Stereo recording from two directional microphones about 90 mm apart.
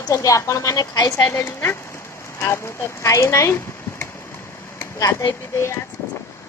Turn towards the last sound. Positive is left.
turn(degrees=35)  # may be behind; listen again after turning